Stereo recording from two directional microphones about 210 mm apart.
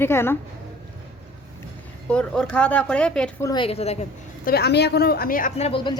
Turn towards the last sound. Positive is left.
turn(degrees=25)  # may be behind; listen again after turning